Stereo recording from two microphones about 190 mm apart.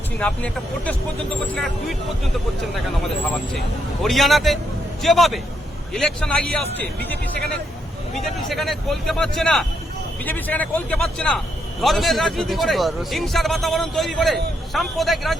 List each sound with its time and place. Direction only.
0.2 s a man's voice: 5° left (ahead or behind)
8.4 s a man's voice: centre (ahead or behind)